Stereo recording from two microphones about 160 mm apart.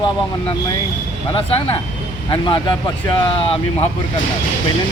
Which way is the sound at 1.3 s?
35° left (ahead or behind).